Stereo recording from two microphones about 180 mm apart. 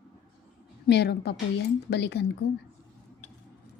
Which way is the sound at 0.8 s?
65° left (ahead or behind).